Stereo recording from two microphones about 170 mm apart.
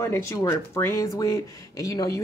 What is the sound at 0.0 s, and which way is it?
Speech, 15° left (ahead or behind).